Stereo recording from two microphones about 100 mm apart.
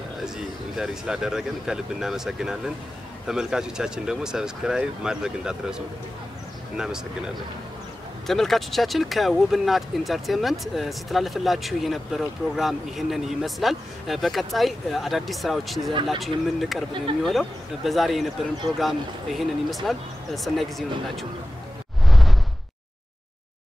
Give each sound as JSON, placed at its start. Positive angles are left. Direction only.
{"t": 0.2, "sound": "speech", "side_deg": -5}
{"t": 8.3, "sound": "speech", "side_deg": 5}
{"t": 15.9, "sound": "speech", "side_deg": -55}
{"t": 16.2, "sound": "speech", "side_deg": 0}
{"t": 22.0, "sound": "a sound", "side_deg": 0}